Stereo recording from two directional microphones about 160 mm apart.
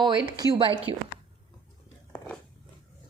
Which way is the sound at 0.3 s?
25° right (ahead or behind).